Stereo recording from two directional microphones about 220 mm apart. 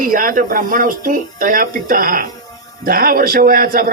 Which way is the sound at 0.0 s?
40° right (ahead or behind).